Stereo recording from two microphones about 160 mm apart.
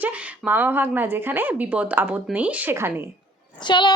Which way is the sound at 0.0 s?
10° right (ahead or behind).